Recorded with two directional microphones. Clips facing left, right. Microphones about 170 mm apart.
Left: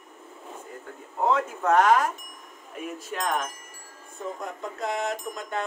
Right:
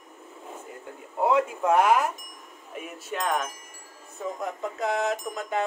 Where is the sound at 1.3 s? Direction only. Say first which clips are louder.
Right 1 dB; 10° right (ahead or behind).